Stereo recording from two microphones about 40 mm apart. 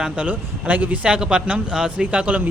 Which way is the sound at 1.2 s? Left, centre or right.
Centre.